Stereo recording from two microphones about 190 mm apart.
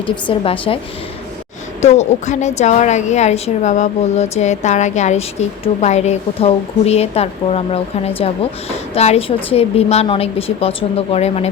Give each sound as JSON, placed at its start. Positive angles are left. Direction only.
{"t": 0.3, "sound": "a woman's voice", "side_deg": 25}
{"t": 1.8, "sound": "a woman's voice", "side_deg": 35}